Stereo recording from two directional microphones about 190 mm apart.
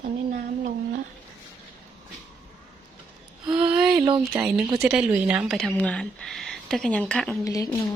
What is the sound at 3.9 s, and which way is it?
Speech, 20° right (ahead or behind).